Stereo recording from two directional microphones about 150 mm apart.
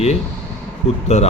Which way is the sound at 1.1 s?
45° left (ahead or behind).